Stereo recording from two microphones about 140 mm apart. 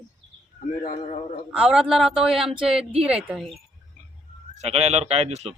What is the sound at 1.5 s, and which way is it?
A man's voice, 5° right (ahead or behind).